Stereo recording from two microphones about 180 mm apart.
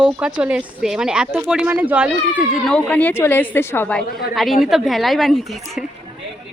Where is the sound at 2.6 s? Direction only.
5° left (ahead or behind).